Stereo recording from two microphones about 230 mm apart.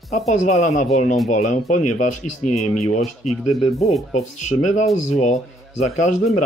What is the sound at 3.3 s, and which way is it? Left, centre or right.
Speech, centre.